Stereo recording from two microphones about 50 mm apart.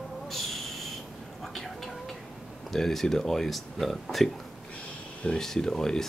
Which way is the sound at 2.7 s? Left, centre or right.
Centre.